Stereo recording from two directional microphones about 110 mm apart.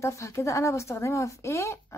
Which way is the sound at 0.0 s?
25° left (ahead or behind).